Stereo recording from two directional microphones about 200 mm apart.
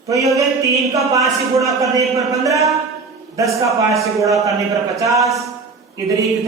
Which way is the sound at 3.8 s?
15° right (ahead or behind).